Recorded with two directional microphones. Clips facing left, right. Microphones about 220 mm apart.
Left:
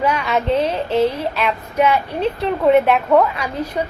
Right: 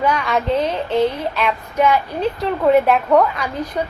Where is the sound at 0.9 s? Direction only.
30° left (ahead or behind).